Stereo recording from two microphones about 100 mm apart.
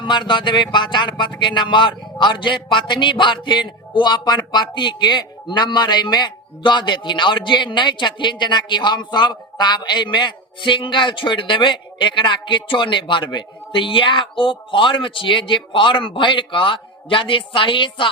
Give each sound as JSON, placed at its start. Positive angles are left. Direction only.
{"t": 0.0, "sound": "speech", "side_deg": 50}